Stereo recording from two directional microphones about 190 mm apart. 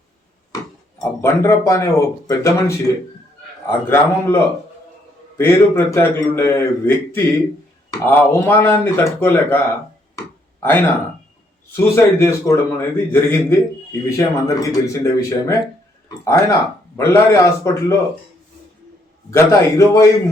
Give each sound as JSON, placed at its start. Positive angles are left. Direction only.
{"t": 1.2, "sound": "a man's voice", "side_deg": 15}
{"t": 10.6, "sound": "a man's voice", "side_deg": 10}
{"t": 19.3, "sound": "a man's voice", "side_deg": 15}